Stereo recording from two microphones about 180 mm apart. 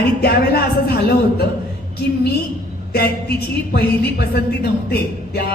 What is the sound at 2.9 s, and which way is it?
A woman's voice, 60° left (ahead or behind).